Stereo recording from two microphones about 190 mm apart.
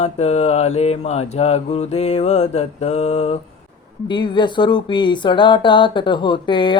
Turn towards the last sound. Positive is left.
turn(degrees=25)  # may be behind; listen again after turning